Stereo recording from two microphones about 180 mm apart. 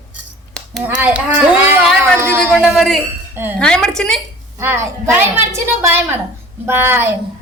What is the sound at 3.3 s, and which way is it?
Speech, 10° right (ahead or behind).